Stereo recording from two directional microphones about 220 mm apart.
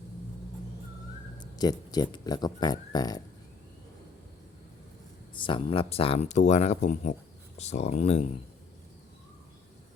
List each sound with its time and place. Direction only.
1.4 s speech: 20° left (ahead or behind)
5.3 s speech: 20° left (ahead or behind)